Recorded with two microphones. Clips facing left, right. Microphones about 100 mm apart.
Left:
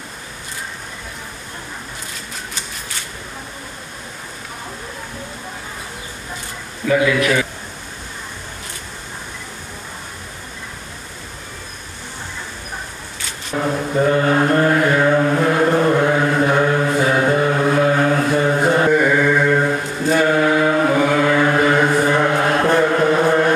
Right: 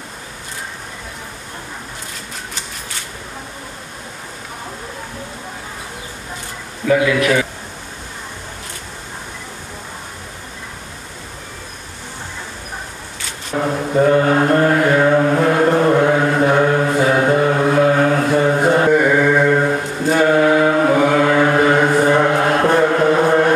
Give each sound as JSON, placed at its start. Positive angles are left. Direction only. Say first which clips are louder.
{"t": 7.1, "sound": "a man's voice", "louder": "right 1 dB", "side_deg": -45}
{"t": 13.6, "sound": "a sound", "louder": "right 1 dB", "side_deg": -20}
{"t": 14.0, "sound": "mantra", "louder": "right 3 dB", "side_deg": -35}
{"t": 14.3, "sound": "music", "louder": "right 1 dB", "side_deg": -20}
{"t": 15.4, "sound": "chant", "louder": "right 2 dB", "side_deg": -40}
{"t": 15.7, "sound": "mantra", "louder": "right 2 dB", "side_deg": -30}
{"t": 19.2, "sound": "mantra", "louder": "right 2 dB", "side_deg": -40}
{"t": 19.5, "sound": "mantra", "louder": "right 1 dB", "side_deg": -25}
{"t": 23.0, "sound": "chant", "louder": "right 2 dB", "side_deg": -25}